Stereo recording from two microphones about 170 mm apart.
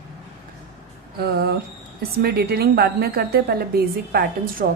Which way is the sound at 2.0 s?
65° right (ahead or behind).